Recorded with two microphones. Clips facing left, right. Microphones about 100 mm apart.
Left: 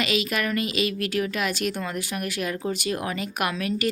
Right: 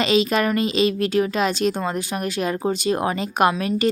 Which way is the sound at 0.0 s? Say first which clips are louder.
Right 7 dB; 30° right (ahead or behind).